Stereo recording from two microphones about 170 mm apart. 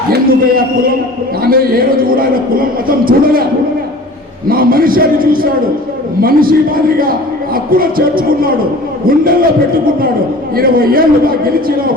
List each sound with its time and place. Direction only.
0.1 s speech: 60° right (ahead or behind)
4.4 s speech: 60° right (ahead or behind)